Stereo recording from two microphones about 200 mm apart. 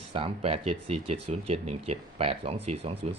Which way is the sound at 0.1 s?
25° right (ahead or behind).